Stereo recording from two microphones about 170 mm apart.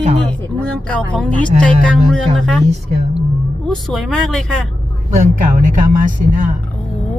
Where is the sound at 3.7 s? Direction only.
Centre (ahead or behind).